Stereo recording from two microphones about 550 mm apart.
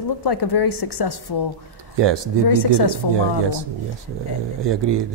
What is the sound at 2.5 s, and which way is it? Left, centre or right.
Speech, left.